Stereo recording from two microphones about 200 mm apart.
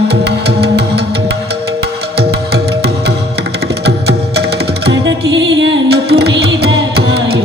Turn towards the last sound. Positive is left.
turn(degrees=-55)  # may be behind; listen again after turning